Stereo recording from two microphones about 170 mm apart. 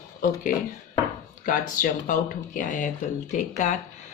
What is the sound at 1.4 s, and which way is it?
Speech, 50° left (ahead or behind).